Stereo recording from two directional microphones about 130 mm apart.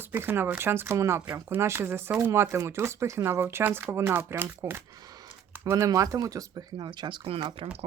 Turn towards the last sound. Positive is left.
turn(degrees=-40)  # may be behind; listen again after turning